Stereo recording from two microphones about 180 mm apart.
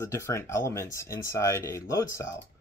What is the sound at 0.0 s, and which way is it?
Speech, 15° left (ahead or behind).